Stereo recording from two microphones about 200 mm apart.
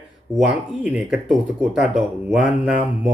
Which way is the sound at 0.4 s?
5° right (ahead or behind).